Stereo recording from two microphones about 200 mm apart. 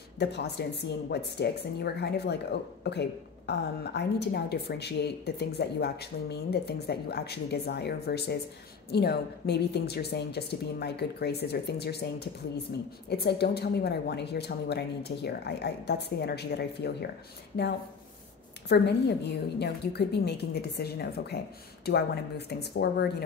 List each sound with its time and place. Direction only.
0.2 s speech: 55° left (ahead or behind)
18.7 s speech: 55° left (ahead or behind)